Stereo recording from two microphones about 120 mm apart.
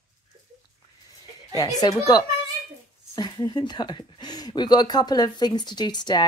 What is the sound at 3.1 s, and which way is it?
Speech, 35° left (ahead or behind).